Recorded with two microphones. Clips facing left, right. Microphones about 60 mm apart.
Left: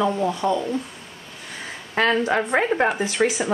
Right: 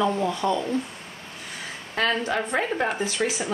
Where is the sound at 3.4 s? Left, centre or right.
Centre.